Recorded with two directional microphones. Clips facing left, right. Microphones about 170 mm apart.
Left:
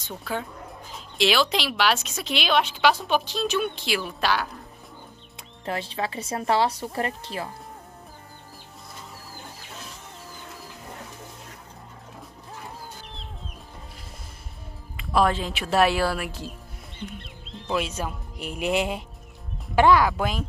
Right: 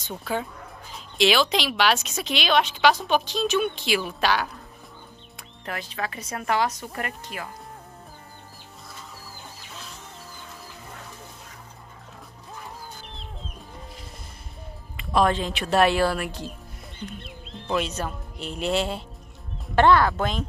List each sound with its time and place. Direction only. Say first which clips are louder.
0.1 s a woman's voice: right 2 dB; 5° right (ahead or behind)
5.7 s speech: left 3 dB; 30° left (ahead or behind)
15.0 s a woman's voice: right 1 dB; 5° left (ahead or behind)
17.6 s speech: right 1 dB; 5° left (ahead or behind)